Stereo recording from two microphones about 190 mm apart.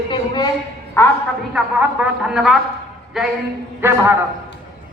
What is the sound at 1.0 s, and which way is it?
Speech, 10° left (ahead or behind).